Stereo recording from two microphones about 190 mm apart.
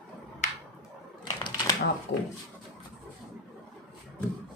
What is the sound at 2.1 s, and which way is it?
Speech, 75° left (ahead or behind).